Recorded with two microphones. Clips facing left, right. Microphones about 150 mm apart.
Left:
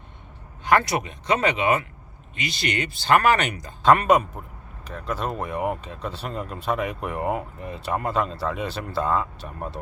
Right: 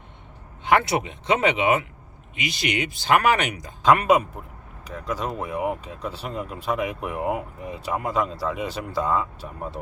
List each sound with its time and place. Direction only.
0.7 s speech: 20° right (ahead or behind); by 9.9 s 5° right (ahead or behind)